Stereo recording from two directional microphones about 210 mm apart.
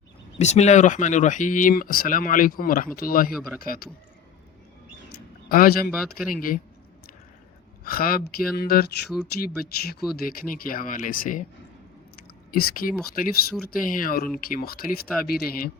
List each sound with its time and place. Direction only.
0.3 s speech: 30° left (ahead or behind)
5.5 s speech: 45° left (ahead or behind)
7.9 s speech: 45° left (ahead or behind)
12.5 s speech: 45° left (ahead or behind)